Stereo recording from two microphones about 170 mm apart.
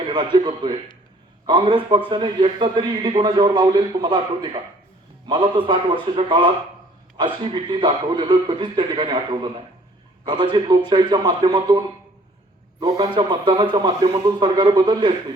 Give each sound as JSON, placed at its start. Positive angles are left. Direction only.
{"t": 0.0, "sound": "a man's voice", "side_deg": -30}
{"t": 10.5, "sound": "a man's voice", "side_deg": -25}